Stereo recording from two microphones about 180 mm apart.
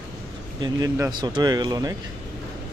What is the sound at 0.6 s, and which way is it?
Speech, 20° right (ahead or behind).